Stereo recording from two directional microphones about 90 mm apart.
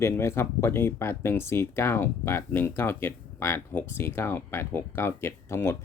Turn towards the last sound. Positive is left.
turn(degrees=30)  # may be behind; listen again after turning